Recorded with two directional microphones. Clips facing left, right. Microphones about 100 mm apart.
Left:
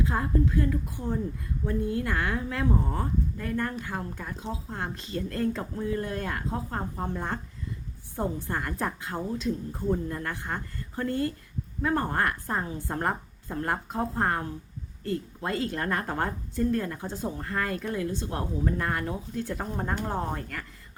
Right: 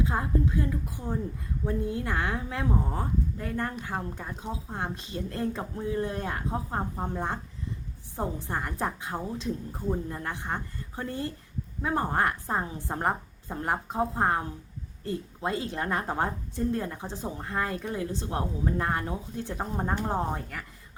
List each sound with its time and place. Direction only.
0.0 s a woman's voice: 15° right (ahead or behind)